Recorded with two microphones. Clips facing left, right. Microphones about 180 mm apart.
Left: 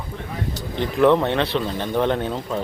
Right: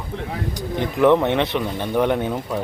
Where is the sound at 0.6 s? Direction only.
15° right (ahead or behind).